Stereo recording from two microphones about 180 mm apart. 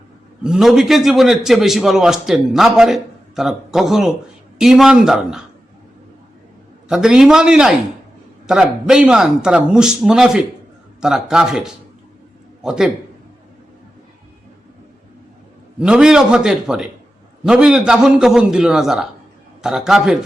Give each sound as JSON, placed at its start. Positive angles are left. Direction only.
{"t": 0.4, "sound": "a man's voice", "side_deg": 0}
{"t": 6.8, "sound": "a man's voice", "side_deg": -5}
{"t": 15.8, "sound": "a man's voice", "side_deg": -5}